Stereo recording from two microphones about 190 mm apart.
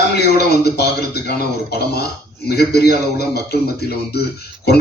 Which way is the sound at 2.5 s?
55° left (ahead or behind).